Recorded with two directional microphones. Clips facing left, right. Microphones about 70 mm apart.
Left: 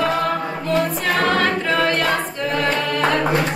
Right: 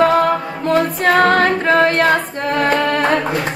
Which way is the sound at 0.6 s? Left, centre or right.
Right.